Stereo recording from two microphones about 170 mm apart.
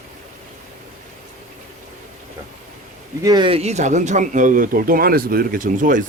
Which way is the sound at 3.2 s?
25° right (ahead or behind).